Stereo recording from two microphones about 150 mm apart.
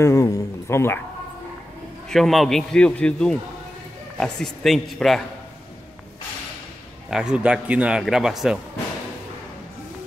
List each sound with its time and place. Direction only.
0.0 s a man's voice: 20° left (ahead or behind)
2.0 s speech: centre (ahead or behind)
7.1 s speech: 5° right (ahead or behind)